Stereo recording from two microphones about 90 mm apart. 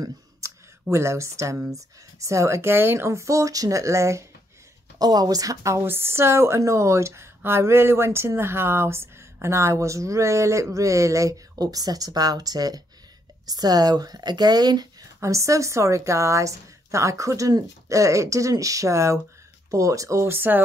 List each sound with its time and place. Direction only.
0.0 s a woman's voice: 35° right (ahead or behind)
4.9 s a woman's voice: 45° right (ahead or behind)
15.1 s a woman's voice: 35° right (ahead or behind)